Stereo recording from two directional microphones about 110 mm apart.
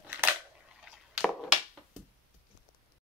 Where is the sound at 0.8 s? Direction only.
5° right (ahead or behind).